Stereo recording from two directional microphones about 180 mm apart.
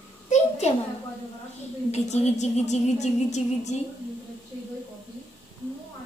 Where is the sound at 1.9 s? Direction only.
40° left (ahead or behind).